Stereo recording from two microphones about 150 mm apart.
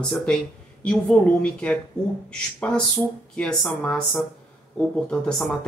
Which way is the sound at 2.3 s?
5° left (ahead or behind).